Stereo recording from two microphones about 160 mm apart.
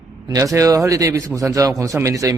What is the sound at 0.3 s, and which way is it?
Speech, 20° right (ahead or behind).